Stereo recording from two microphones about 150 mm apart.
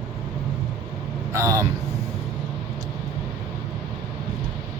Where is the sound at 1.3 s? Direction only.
20° right (ahead or behind).